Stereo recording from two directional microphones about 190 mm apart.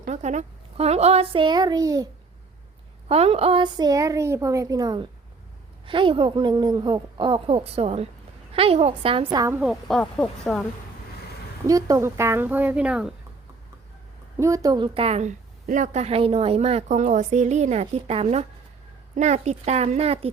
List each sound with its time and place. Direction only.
0.0 s speech: 40° right (ahead or behind); by 2.0 s 20° right (ahead or behind)
3.1 s speech: 30° right (ahead or behind)
9.6 s speech: centre (ahead or behind)
11.6 s speech: 15° right (ahead or behind)
14.3 s a woman's voice: 15° right (ahead or behind); by 20.3 s 30° right (ahead or behind)